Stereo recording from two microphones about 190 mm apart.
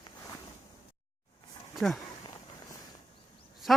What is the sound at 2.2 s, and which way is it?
Fireworks, 20° left (ahead or behind).